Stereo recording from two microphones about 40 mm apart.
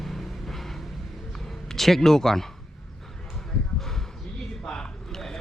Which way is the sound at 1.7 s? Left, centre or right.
Centre.